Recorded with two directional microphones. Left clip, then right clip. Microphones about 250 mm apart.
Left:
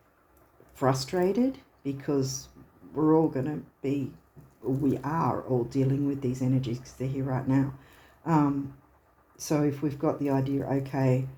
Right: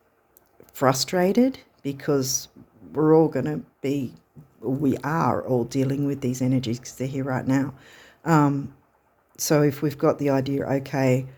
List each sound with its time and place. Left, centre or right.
0.7 s speech: right